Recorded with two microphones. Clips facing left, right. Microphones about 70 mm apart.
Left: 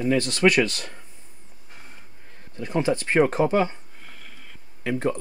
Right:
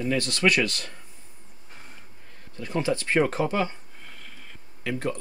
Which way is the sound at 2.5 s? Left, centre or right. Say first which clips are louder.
Left 3 dB; left.